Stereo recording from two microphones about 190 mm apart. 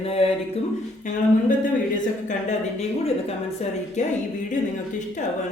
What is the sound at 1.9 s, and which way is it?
A woman's voice, 40° left (ahead or behind).